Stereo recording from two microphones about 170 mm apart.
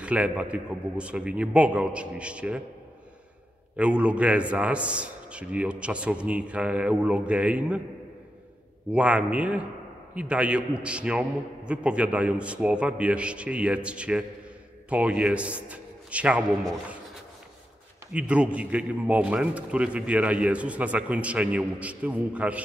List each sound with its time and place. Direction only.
0.0 s a man's voice: 5° right (ahead or behind)
3.7 s a man's voice: 5° right (ahead or behind)
8.9 s a man's voice: 5° right (ahead or behind)
18.1 s a man's voice: 5° right (ahead or behind)